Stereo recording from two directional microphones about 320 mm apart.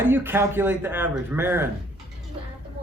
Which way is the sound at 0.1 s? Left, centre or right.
Centre.